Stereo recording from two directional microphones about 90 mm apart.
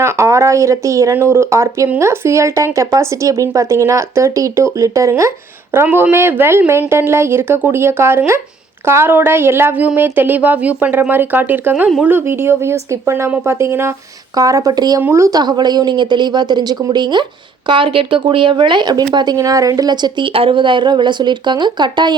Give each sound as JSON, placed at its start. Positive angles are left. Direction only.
{"t": 0.0, "sound": "a woman's voice", "side_deg": -35}
{"t": 14.3, "sound": "a woman's voice", "side_deg": -40}
{"t": 15.1, "sound": "speech", "side_deg": -35}
{"t": 15.4, "sound": "a woman's voice", "side_deg": -50}
{"t": 17.7, "sound": "speech", "side_deg": -70}